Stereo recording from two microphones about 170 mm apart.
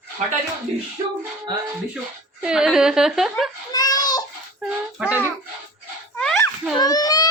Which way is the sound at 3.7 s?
20° left (ahead or behind).